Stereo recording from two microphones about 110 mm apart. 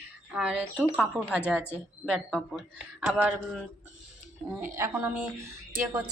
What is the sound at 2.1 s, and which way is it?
Speech, 5° right (ahead or behind).